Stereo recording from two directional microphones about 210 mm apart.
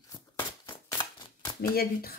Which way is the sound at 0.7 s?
20° left (ahead or behind).